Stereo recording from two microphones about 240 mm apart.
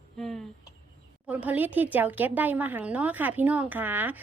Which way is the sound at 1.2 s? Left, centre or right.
Centre.